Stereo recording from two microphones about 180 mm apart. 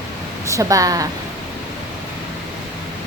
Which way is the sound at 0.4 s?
15° right (ahead or behind).